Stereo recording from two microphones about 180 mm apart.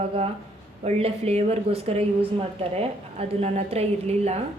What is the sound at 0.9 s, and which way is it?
A woman's voice, 35° right (ahead or behind).